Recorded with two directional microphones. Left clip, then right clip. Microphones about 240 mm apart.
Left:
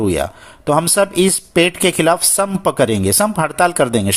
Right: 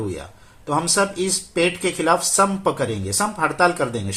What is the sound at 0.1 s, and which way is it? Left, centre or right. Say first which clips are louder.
Speech: left 14 dB; left.